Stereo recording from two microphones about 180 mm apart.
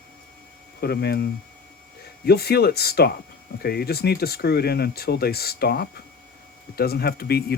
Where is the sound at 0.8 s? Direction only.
65° left (ahead or behind).